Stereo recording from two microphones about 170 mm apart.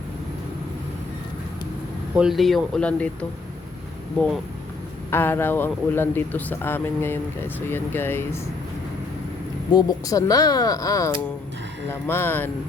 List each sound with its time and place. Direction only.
2.1 s speech: centre (ahead or behind)
5.1 s speech: 15° left (ahead or behind)
9.7 s speech: 20° left (ahead or behind)